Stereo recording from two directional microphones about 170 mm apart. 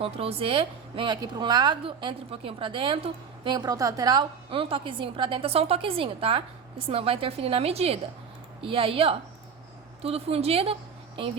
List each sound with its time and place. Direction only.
0.0 s a woman's voice: 35° right (ahead or behind)